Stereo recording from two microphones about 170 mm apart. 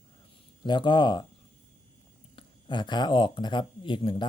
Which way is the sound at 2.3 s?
25° left (ahead or behind).